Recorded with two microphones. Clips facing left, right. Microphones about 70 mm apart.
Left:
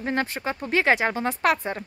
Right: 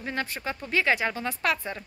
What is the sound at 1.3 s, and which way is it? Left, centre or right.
Speech, left.